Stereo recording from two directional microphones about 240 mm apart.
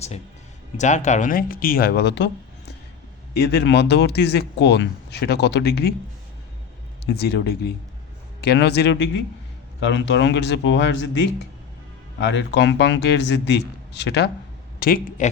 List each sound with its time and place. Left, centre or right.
0.8 s speech: left
7.0 s speech: left